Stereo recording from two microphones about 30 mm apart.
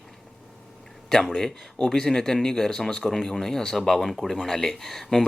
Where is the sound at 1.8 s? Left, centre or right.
Centre.